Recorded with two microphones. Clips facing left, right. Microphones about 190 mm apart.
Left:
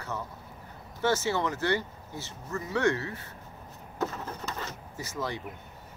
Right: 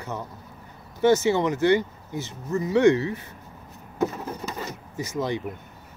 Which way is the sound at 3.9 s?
10° right (ahead or behind).